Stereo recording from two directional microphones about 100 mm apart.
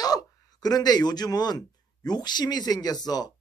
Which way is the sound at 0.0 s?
40° left (ahead or behind).